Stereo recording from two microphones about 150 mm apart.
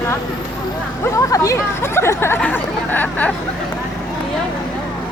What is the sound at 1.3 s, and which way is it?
Speech, 20° left (ahead or behind).